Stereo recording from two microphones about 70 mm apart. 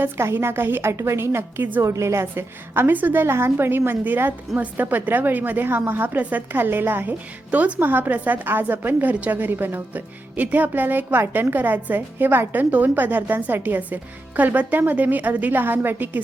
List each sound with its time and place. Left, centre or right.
0.0 s a woman's voice: right
1.8 s a woman's voice: right